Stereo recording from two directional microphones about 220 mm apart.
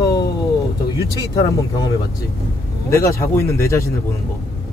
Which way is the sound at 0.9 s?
15° left (ahead or behind).